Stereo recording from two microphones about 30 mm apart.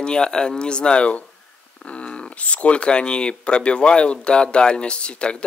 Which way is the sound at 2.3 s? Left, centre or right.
Left.